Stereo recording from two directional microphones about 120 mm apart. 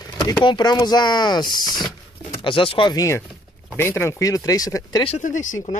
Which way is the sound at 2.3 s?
50° left (ahead or behind).